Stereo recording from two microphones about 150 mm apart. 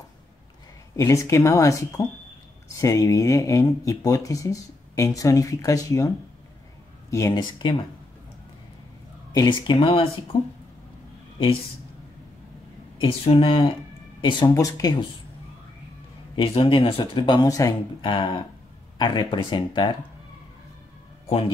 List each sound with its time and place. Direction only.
0.9 s speech: 20° left (ahead or behind)
9.3 s speech: 25° left (ahead or behind)
13.0 s speech: 35° left (ahead or behind)
16.3 s speech: 35° left (ahead or behind)